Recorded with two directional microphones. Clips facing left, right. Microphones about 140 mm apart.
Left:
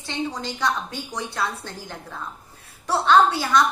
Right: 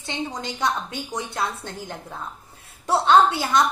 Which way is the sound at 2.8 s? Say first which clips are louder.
Right 1 dB; 25° right (ahead or behind).